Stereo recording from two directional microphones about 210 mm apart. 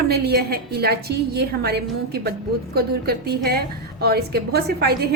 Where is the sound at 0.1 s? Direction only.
50° right (ahead or behind).